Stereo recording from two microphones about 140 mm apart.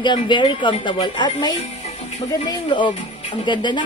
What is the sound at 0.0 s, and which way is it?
Speech, 35° left (ahead or behind).